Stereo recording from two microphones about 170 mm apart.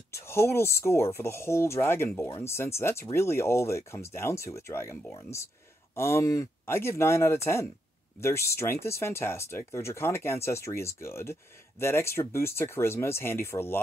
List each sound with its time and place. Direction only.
0.1 s speech: 15° left (ahead or behind)